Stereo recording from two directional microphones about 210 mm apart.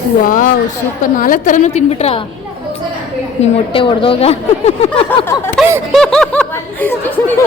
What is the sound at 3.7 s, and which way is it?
A woman's voice, 25° left (ahead or behind).